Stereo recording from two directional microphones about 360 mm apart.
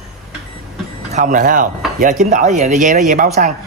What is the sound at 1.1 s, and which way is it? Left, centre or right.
Speech, right.